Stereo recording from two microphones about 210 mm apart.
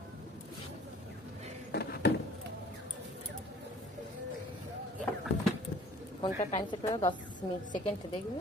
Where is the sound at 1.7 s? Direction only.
50° left (ahead or behind).